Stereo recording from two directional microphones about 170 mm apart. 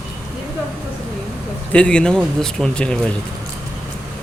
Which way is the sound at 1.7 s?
5° left (ahead or behind).